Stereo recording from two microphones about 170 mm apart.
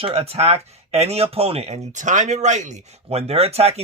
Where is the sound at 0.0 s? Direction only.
35° right (ahead or behind).